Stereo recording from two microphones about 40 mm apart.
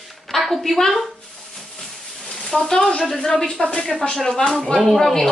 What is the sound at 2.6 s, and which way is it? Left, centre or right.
A woman's voice, centre.